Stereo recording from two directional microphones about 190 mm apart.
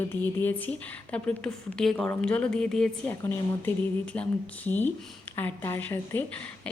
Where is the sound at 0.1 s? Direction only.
10° left (ahead or behind).